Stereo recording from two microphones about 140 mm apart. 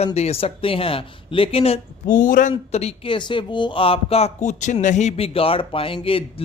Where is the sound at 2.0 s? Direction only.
70° left (ahead or behind); by 6.2 s 40° left (ahead or behind).